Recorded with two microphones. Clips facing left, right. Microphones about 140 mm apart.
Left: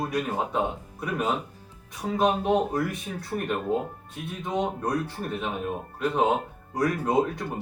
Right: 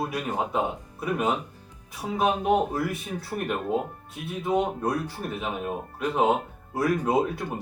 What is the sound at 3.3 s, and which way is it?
Speech, 10° right (ahead or behind).